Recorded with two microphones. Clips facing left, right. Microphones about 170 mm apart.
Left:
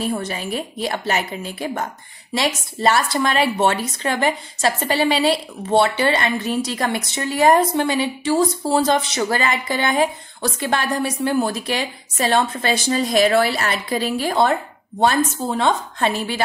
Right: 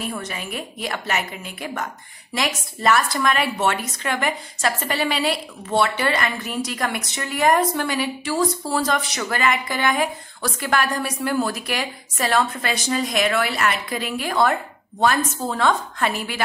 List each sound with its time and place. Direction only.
0.0 s a woman's voice: 30° left (ahead or behind)